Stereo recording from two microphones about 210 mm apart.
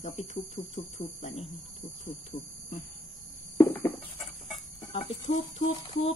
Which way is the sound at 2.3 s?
45° left (ahead or behind).